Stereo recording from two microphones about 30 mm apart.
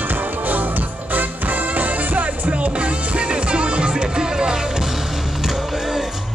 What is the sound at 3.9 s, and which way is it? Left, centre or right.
Music, right.